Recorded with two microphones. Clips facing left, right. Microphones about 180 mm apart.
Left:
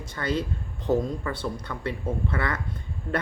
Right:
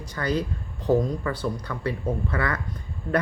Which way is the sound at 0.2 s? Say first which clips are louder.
Right 2 dB; 25° left (ahead or behind).